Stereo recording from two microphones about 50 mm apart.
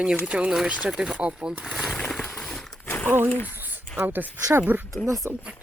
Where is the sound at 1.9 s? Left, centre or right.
Centre.